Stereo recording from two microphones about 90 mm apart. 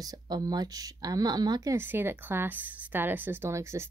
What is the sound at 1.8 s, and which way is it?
A woman's voice, 25° right (ahead or behind).